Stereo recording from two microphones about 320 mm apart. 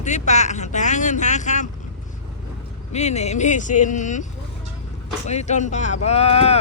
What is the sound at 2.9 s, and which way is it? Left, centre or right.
Speech, left.